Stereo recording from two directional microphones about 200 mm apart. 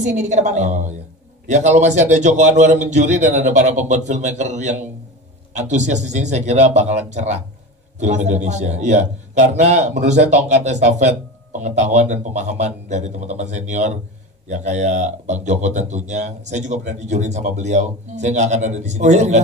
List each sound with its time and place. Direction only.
0.0 s a man's voice: 35° right (ahead or behind)